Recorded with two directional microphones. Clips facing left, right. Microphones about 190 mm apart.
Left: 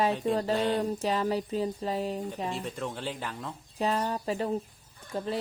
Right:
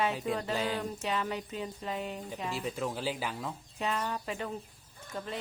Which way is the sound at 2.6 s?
5° right (ahead or behind).